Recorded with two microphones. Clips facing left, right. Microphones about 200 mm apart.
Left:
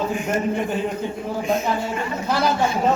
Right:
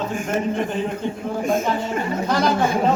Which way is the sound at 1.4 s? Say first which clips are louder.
Right 1 dB; 50° right (ahead or behind).